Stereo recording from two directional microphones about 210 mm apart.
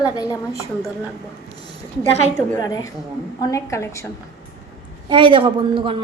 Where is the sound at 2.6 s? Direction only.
20° left (ahead or behind).